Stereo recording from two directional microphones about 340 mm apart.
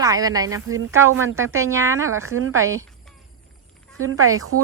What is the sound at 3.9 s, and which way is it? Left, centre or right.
Speech, right.